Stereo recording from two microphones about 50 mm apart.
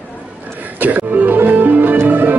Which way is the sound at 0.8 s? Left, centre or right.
Right.